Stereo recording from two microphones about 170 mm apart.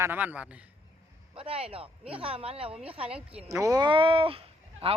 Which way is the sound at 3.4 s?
20° right (ahead or behind).